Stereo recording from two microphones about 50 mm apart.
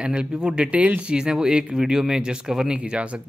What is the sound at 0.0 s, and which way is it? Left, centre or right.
Speech, right.